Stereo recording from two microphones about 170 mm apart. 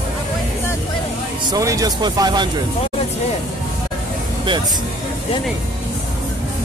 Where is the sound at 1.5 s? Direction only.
20° right (ahead or behind).